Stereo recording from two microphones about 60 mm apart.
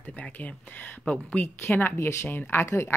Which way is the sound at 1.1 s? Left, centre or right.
Left.